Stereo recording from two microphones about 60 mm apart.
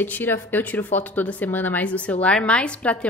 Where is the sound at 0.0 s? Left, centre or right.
Left.